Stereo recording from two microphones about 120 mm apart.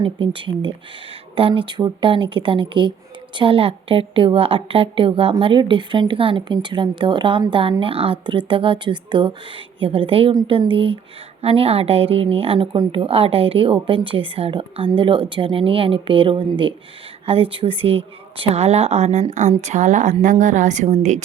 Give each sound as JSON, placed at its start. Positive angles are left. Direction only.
{"t": 0.0, "sound": "a woman's voice", "side_deg": -45}
{"t": 10.3, "sound": "a woman's voice", "side_deg": -40}
{"t": 19.3, "sound": "a woman's voice", "side_deg": -85}